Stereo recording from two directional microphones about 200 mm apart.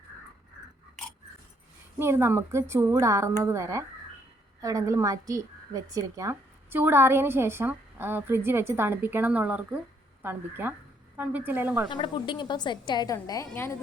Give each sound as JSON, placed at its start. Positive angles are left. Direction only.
{"t": 2.0, "sound": "a woman's voice", "side_deg": -10}
{"t": 11.9, "sound": "a woman's voice", "side_deg": 25}